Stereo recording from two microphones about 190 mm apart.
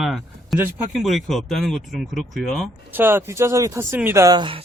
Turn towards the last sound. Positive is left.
turn(degrees=-25)  # may be behind; listen again after turning